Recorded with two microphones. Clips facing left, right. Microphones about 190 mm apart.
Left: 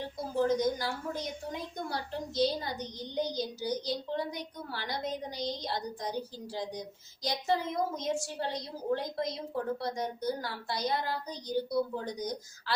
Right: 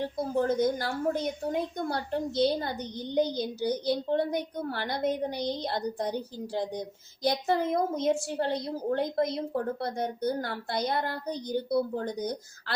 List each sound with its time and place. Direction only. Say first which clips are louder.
0.3 s a woman's voice: right 2 dB; 55° right (ahead or behind)